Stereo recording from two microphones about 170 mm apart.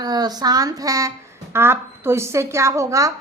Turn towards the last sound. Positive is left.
turn(degrees=-20)  # may be behind; listen again after turning